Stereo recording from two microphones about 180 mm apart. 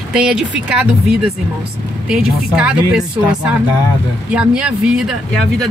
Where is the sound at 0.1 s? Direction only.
5° right (ahead or behind).